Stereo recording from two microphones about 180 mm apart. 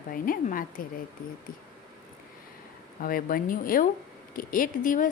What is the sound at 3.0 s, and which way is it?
A woman's voice, 50° left (ahead or behind).